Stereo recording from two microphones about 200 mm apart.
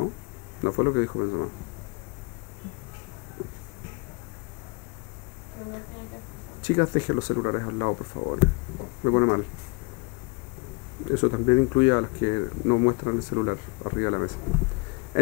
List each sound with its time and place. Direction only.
0.7 s speech: 20° left (ahead or behind)
6.6 s speech: 20° left (ahead or behind)
7.3 s speech: 20° left (ahead or behind)
11.1 s speech: 20° left (ahead or behind)